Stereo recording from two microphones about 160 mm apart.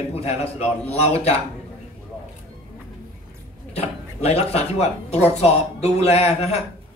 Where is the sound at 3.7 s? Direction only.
40° left (ahead or behind).